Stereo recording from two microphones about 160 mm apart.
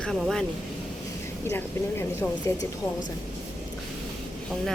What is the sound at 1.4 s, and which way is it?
Speech, 15° left (ahead or behind).